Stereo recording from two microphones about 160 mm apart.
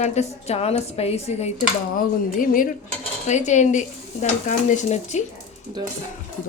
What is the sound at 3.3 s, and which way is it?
A woman's voice, 50° left (ahead or behind).